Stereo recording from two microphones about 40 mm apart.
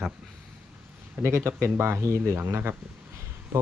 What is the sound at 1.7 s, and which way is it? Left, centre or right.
Speech, right.